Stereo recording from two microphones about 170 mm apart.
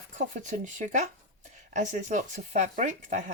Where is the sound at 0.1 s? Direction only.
50° right (ahead or behind).